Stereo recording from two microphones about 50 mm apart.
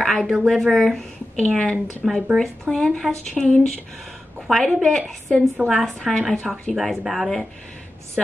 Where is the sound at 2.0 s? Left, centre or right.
Centre.